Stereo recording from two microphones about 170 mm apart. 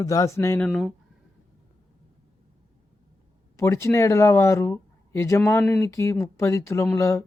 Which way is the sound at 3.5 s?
15° left (ahead or behind).